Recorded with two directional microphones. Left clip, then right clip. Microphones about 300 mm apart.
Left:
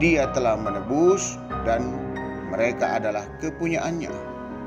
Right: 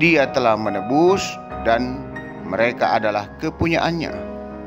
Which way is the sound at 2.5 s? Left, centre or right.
Centre.